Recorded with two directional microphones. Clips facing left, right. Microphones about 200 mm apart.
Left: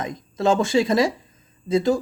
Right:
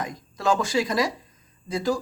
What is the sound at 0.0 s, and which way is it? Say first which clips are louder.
Speech: left 4 dB; 25° left (ahead or behind).